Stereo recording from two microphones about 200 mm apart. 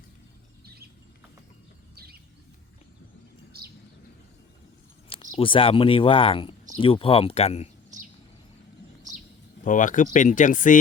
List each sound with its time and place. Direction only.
3.6 s bird: 50° right (ahead or behind)
5.0 s speech: 25° left (ahead or behind)
9.6 s speech: 40° left (ahead or behind)